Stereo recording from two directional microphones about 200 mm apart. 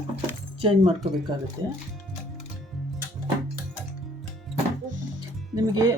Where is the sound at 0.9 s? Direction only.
Centre (ahead or behind).